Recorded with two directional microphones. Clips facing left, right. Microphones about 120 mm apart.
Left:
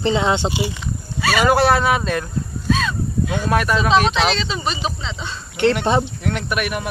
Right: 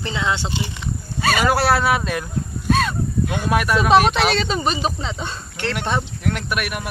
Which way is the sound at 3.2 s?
10° right (ahead or behind).